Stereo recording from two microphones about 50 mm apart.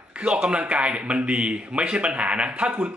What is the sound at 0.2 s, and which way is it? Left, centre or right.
Speech, right.